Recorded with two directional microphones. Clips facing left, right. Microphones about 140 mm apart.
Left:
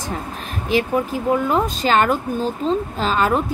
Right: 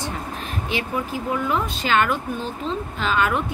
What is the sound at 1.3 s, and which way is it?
Speech, 40° left (ahead or behind).